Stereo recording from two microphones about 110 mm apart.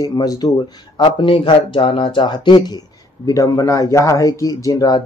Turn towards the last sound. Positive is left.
turn(degrees=35)  # may be behind; listen again after turning